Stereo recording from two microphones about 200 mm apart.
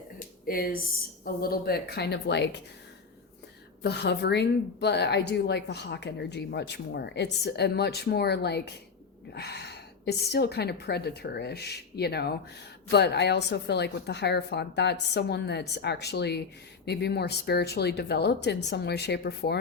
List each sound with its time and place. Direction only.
0.4 s a woman's voice: 45° left (ahead or behind)
3.8 s a woman's voice: 60° left (ahead or behind)